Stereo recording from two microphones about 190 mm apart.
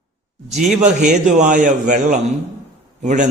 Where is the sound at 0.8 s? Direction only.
40° right (ahead or behind).